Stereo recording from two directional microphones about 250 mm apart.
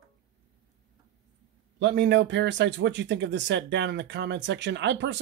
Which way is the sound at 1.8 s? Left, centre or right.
Right.